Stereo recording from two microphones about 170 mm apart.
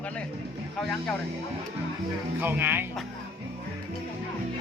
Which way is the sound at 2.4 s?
10° right (ahead or behind).